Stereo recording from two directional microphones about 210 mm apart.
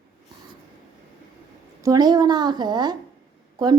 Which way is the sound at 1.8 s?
20° right (ahead or behind).